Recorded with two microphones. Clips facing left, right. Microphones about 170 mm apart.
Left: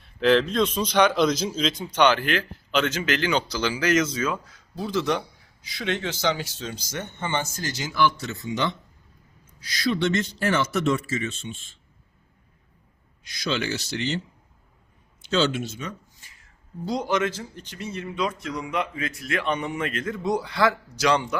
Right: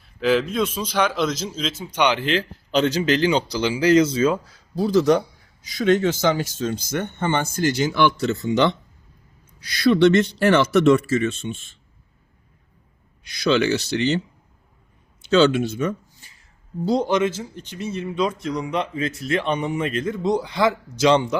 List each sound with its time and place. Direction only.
0.0 s a man's voice: centre (ahead or behind); by 2.4 s 20° right (ahead or behind)
2.7 s speech: 35° right (ahead or behind); by 11.3 s 65° right (ahead or behind)
13.2 s speech: 65° right (ahead or behind)
15.3 s speech: 60° right (ahead or behind)
16.8 s a man's voice: 30° right (ahead or behind)